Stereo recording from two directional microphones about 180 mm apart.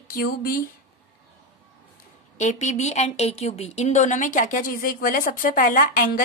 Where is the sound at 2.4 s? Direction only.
40° left (ahead or behind).